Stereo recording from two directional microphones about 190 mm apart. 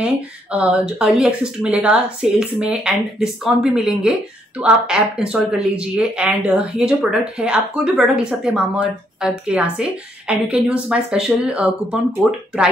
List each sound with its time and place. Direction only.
0.0 s speech: 5° right (ahead or behind)